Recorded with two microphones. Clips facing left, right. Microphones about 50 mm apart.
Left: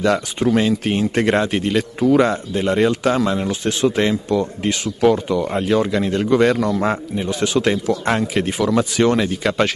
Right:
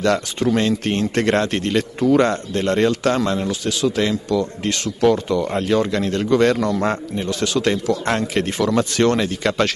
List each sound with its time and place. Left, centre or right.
0.0 s speech: centre
3.6 s speech: left
4.6 s speech: centre
7.2 s speech: centre